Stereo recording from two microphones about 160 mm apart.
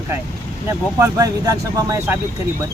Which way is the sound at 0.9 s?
20° right (ahead or behind).